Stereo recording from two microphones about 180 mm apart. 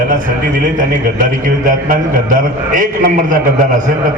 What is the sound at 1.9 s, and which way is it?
A man's voice, 45° right (ahead or behind).